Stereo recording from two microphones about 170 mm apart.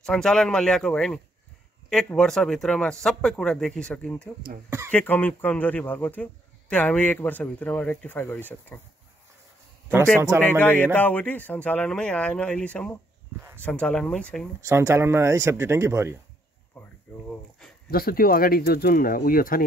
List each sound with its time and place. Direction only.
0.0 s a man's voice: 5° left (ahead or behind)
4.6 s speech: 15° right (ahead or behind)
4.9 s speech: 10° left (ahead or behind)
10.6 s speech: 10° left (ahead or behind)
14.7 s speech: 15° right (ahead or behind)
16.8 s a sound: 10° left (ahead or behind)
17.9 s speech: 60° left (ahead or behind)